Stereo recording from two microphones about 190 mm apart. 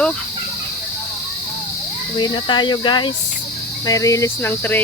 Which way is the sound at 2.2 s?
25° left (ahead or behind).